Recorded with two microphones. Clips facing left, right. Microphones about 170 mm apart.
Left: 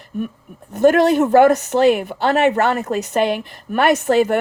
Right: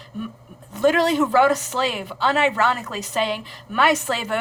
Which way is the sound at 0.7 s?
50° left (ahead or behind).